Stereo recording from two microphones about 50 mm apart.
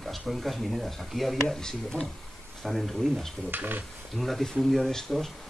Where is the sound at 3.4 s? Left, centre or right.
Right.